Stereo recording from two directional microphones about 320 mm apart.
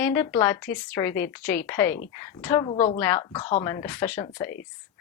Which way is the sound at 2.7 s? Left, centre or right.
Left.